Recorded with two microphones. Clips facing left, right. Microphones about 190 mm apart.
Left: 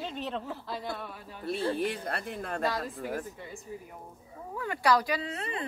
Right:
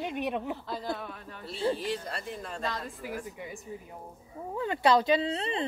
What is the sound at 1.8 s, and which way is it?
Speech, 55° left (ahead or behind).